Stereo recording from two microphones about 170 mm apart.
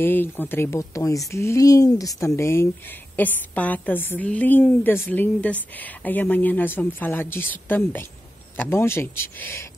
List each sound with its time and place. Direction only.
0.0 s a woman's voice: 10° left (ahead or behind)